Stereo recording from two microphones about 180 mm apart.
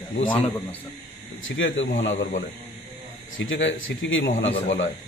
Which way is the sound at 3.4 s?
90° left.